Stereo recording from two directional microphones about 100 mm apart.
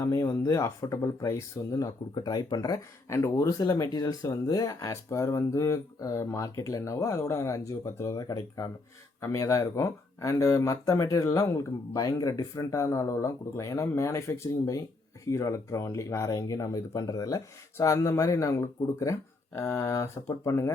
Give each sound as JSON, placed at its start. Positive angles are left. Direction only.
{"t": 0.0, "sound": "speech", "side_deg": 30}
{"t": 2.1, "sound": "speech", "side_deg": 45}